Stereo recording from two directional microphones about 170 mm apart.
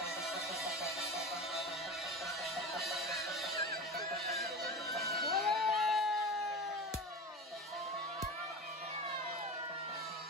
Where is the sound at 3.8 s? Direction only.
Centre (ahead or behind).